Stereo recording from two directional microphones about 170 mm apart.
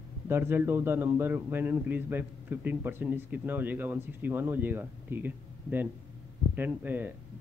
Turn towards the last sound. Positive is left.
turn(degrees=-10)  # may be behind; listen again after turning